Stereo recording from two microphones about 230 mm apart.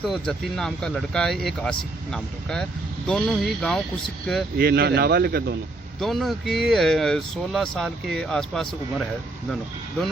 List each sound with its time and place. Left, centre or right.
0.0 s speech: centre
4.5 s speech: right
6.0 s speech: centre